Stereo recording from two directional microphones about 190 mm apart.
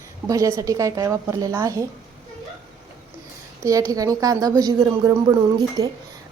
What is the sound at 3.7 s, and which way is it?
A woman's voice, 20° right (ahead or behind).